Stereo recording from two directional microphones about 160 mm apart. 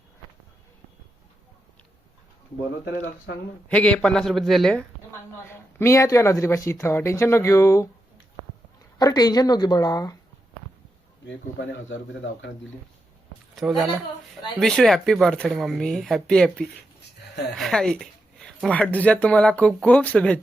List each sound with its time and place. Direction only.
3.7 s speech: 5° left (ahead or behind)
5.5 s speech: 20° left (ahead or behind)
9.0 s speech: 25° left (ahead or behind)
13.6 s speech: centre (ahead or behind)